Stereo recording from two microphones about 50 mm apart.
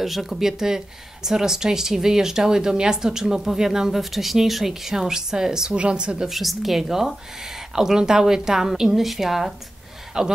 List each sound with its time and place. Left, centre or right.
0.0 s speech: centre
6.2 s a woman's voice: centre